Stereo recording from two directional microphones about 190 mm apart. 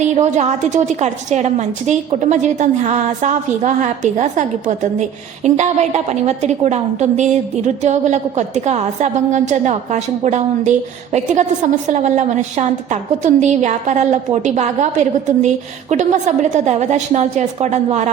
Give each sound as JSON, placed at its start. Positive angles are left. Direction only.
{"t": 0.0, "sound": "a woman's voice", "side_deg": -40}